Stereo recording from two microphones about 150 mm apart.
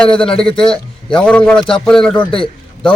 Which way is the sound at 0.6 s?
5° left (ahead or behind).